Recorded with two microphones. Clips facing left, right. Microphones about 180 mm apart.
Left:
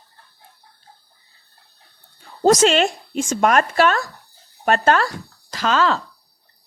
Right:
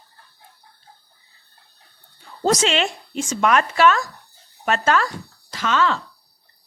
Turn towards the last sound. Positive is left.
turn(degrees=35)  # may be behind; listen again after turning